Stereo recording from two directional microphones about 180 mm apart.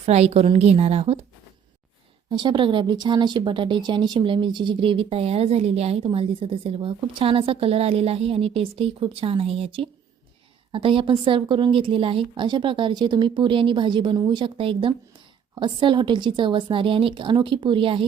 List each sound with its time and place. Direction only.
0.0 s speech: 35° right (ahead or behind)
2.3 s a woman's voice: 25° right (ahead or behind)